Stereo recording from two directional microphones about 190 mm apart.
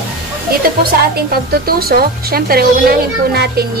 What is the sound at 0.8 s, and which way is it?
A woman's voice, 55° right (ahead or behind).